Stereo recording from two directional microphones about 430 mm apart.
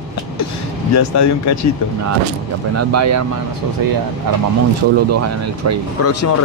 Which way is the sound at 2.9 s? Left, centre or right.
Right.